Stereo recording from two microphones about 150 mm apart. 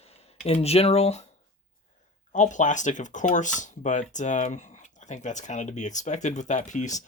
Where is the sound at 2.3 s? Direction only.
55° left (ahead or behind).